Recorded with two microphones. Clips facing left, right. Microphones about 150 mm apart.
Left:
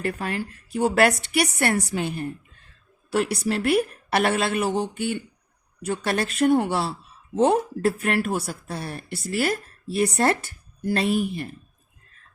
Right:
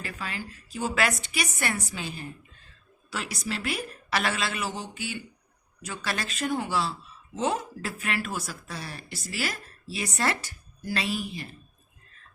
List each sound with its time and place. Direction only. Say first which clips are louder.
0.0 s speech: left 9 dB; 55° left (ahead or behind)